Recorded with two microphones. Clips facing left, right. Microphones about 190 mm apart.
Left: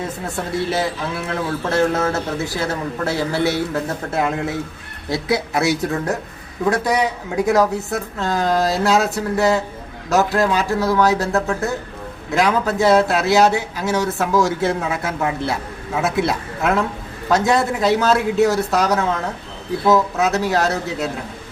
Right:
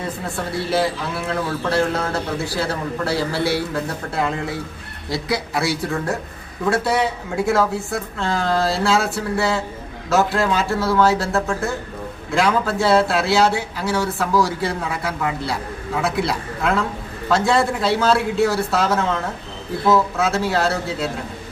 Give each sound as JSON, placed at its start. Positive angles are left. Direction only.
{"t": 0.3, "sound": "a man's voice", "side_deg": 25}
{"t": 5.1, "sound": "a man's voice", "side_deg": 25}